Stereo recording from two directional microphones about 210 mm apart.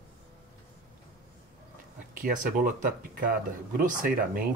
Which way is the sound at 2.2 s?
40° right (ahead or behind).